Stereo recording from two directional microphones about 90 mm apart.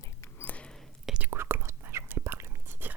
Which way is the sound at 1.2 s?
25° right (ahead or behind).